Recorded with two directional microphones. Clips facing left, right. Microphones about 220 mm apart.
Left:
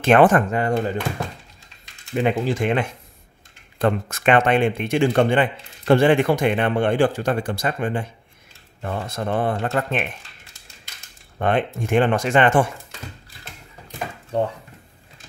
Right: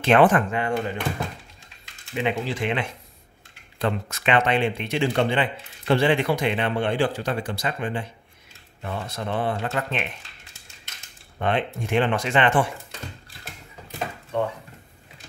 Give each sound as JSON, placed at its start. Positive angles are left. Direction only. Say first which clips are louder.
{"t": 0.0, "sound": "speech", "louder": "left 3 dB", "side_deg": 45}
{"t": 2.1, "sound": "speech", "louder": "left 5 dB", "side_deg": 45}
{"t": 11.3, "sound": "speech", "louder": "left 4 dB", "side_deg": 45}
{"t": 14.3, "sound": "speech", "louder": "left 3 dB", "side_deg": 35}